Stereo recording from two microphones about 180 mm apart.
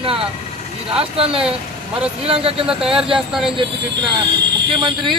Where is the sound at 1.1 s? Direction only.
30° right (ahead or behind).